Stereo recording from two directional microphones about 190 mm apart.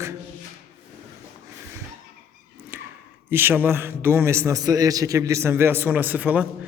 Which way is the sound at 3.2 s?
10° right (ahead or behind).